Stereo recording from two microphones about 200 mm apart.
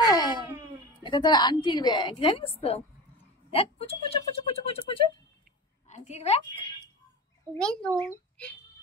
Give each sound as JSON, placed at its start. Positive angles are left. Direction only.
{"t": 0.0, "sound": "a sound", "side_deg": 20}
{"t": 1.0, "sound": "a woman's voice", "side_deg": 20}
{"t": 3.5, "sound": "a woman's voice", "side_deg": 30}
{"t": 7.5, "sound": "speech", "side_deg": 5}